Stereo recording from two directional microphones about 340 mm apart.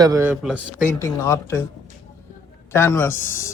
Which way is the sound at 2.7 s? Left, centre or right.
Centre.